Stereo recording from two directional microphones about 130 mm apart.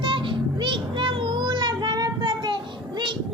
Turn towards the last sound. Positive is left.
turn(degrees=-35)  # may be behind; listen again after turning